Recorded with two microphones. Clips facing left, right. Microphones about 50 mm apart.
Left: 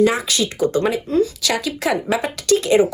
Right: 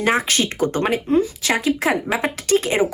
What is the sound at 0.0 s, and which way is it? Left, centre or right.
Speech, right.